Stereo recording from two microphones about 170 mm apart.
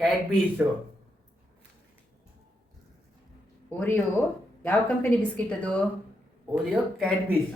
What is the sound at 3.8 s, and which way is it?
Speech, 10° left (ahead or behind).